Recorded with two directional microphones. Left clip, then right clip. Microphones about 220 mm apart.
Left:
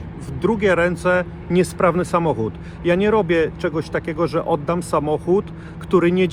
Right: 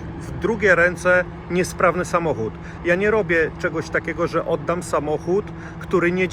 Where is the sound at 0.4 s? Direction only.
45° left (ahead or behind).